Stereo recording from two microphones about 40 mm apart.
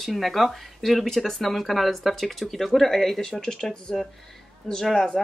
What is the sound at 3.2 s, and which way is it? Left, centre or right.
Speech, centre.